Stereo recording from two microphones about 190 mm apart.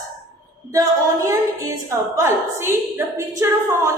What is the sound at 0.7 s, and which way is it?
A woman's voice, 15° right (ahead or behind).